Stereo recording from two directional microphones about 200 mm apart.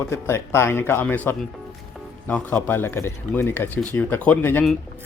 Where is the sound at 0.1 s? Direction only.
15° left (ahead or behind).